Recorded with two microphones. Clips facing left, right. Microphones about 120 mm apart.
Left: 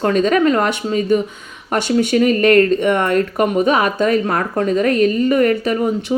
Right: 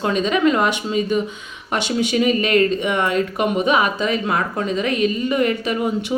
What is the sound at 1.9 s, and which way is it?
Speech, 50° left (ahead or behind).